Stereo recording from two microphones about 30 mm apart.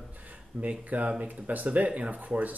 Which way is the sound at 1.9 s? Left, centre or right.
Right.